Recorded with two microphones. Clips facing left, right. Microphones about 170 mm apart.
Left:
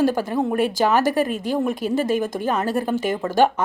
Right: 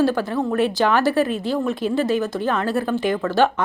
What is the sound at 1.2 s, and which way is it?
Speech, 45° left (ahead or behind).